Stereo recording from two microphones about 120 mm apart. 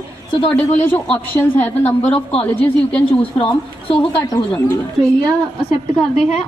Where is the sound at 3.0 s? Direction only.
45° left (ahead or behind).